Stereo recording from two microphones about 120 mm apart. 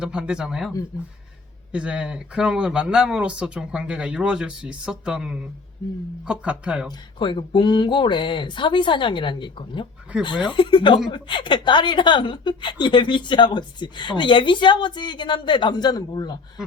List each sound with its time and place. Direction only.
0.0 s speech: 5° right (ahead or behind)
1.7 s speech: 10° right (ahead or behind)
7.2 s a woman's voice: 40° left (ahead or behind)